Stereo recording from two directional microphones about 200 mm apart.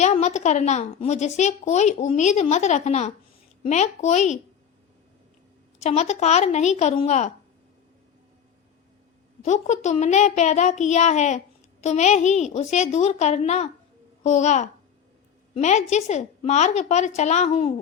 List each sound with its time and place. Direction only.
0.0 s speech: 35° left (ahead or behind)
5.8 s speech: 35° left (ahead or behind)
9.4 s speech: 35° left (ahead or behind)